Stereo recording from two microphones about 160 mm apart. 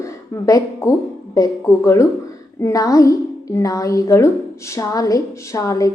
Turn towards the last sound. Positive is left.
turn(degrees=20)  # may be behind; listen again after turning